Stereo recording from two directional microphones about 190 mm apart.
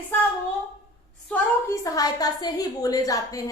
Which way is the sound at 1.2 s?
10° left (ahead or behind).